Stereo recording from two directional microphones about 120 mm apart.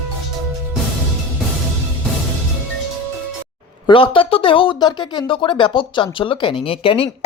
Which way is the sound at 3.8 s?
45° left (ahead or behind).